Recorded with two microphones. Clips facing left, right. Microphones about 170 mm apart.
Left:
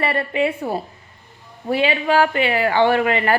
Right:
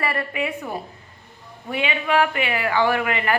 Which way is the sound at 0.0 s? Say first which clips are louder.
Left 5 dB; 30° left (ahead or behind).